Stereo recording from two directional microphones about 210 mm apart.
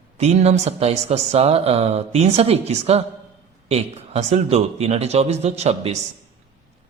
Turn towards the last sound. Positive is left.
turn(degrees=-30)  # may be behind; listen again after turning